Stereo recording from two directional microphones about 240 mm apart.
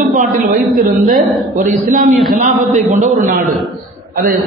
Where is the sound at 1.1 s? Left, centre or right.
Centre.